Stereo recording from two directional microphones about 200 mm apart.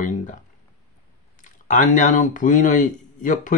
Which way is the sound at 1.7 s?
40° left (ahead or behind).